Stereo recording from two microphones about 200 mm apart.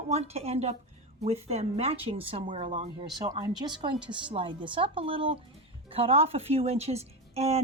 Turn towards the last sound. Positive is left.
turn(degrees=-30)  # may be behind; listen again after turning